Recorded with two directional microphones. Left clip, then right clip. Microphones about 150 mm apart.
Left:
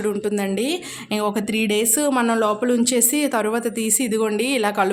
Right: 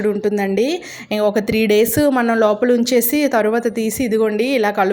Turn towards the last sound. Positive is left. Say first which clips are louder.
# right 4 dB
turn(degrees=-20)  # may be behind; listen again after turning